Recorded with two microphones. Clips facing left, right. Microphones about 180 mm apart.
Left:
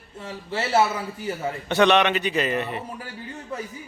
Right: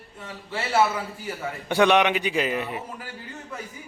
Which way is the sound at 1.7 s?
10° right (ahead or behind).